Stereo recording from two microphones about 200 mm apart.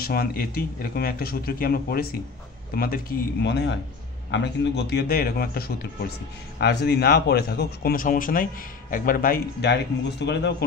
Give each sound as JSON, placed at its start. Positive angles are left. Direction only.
{"t": 0.0, "sound": "speech", "side_deg": 50}
{"t": 3.4, "sound": "speech", "side_deg": 60}